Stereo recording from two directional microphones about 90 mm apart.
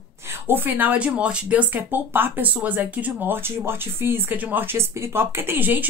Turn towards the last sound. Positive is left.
turn(degrees=-20)  # may be behind; listen again after turning